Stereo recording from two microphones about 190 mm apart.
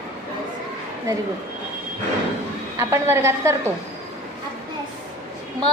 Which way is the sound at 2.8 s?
15° right (ahead or behind).